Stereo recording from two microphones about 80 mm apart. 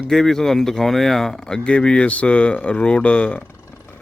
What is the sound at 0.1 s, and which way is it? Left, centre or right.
Speech, centre.